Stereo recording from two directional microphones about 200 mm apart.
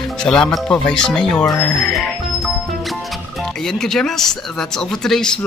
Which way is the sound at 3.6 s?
Centre (ahead or behind).